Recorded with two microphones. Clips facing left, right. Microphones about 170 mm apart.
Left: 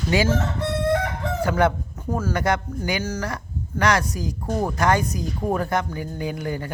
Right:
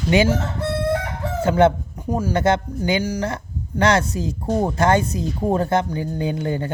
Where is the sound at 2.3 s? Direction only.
25° right (ahead or behind).